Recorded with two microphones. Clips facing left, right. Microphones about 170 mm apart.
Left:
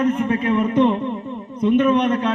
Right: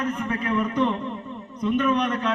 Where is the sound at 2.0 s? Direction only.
30° left (ahead or behind).